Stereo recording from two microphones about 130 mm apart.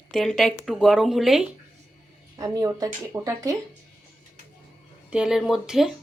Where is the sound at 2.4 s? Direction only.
30° right (ahead or behind).